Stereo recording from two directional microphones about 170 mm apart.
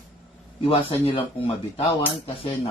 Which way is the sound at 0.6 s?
35° left (ahead or behind).